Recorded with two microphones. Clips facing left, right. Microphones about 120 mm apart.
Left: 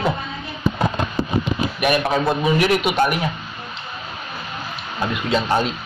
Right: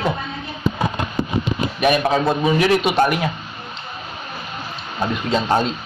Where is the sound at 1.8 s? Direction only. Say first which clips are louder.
Right 2 dB; 30° right (ahead or behind).